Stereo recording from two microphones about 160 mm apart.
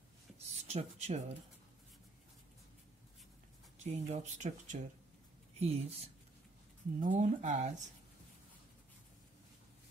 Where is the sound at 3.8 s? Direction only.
45° right (ahead or behind).